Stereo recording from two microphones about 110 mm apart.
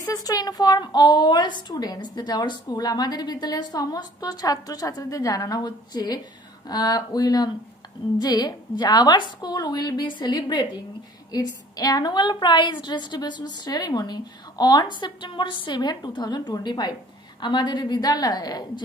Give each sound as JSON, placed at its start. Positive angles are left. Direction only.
{"t": 0.0, "sound": "a woman's voice", "side_deg": 35}